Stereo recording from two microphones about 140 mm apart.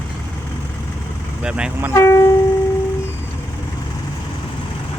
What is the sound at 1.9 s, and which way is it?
Speech, 20° left (ahead or behind).